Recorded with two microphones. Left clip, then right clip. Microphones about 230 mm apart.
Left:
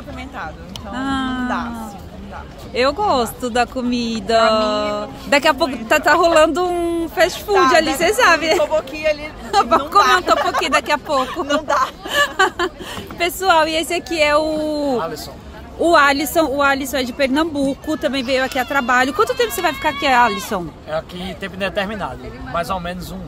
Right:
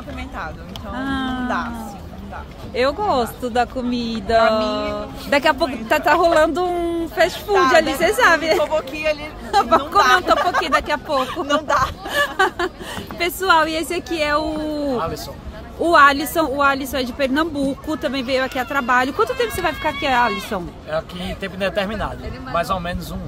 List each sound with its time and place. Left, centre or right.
0.9 s speech: centre
2.7 s a woman's voice: centre
8.6 s speech: centre
9.5 s speech: centre
9.8 s speech: centre
10.6 s a woman's voice: centre
11.1 s a woman's voice: centre
20.9 s speech: centre